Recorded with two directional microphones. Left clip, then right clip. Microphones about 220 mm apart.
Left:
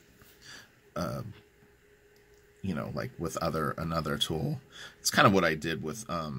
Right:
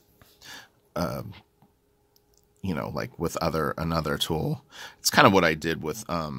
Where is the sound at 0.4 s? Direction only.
50° right (ahead or behind).